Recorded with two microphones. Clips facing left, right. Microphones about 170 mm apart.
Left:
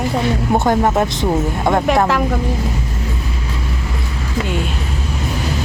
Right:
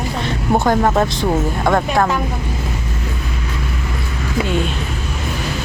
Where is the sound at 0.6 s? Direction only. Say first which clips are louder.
Right 1 dB; 20° left (ahead or behind).